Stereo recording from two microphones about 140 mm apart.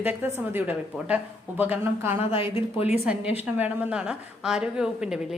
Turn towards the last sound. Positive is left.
turn(degrees=-5)  # may be behind; listen again after turning